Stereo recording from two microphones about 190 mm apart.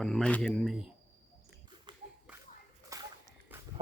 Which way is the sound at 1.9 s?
25° right (ahead or behind).